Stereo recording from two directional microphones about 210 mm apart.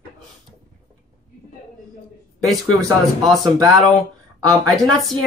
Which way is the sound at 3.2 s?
20° right (ahead or behind).